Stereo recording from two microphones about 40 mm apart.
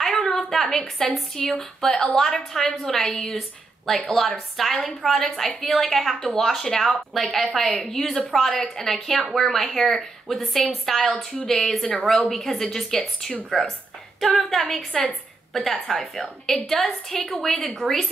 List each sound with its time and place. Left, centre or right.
0.3 s a woman's voice: centre
13.5 s a woman's voice: centre
14.3 s a woman's voice: centre